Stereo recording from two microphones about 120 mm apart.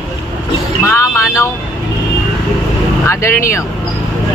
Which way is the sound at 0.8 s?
25° left (ahead or behind).